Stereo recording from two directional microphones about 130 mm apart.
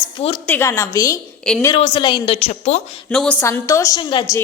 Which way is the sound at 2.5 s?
55° left (ahead or behind).